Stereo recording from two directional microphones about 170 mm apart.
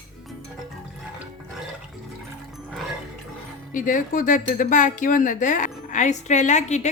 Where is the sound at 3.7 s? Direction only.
50° left (ahead or behind).